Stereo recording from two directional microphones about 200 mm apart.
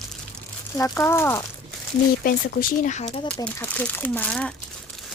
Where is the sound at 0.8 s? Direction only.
10° left (ahead or behind).